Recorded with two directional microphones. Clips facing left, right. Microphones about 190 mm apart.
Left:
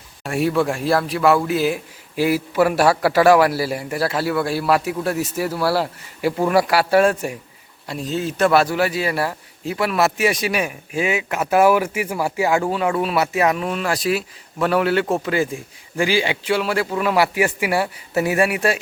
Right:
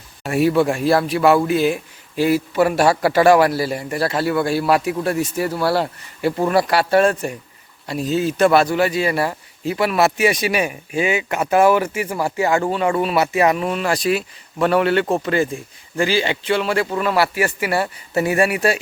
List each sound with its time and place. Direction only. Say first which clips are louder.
0.2 s a man's voice: right 3 dB; centre (ahead or behind)
7.9 s a man's voice: right 4 dB; 5° right (ahead or behind)